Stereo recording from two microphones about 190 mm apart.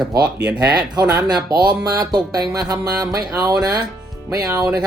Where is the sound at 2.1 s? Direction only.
20° right (ahead or behind).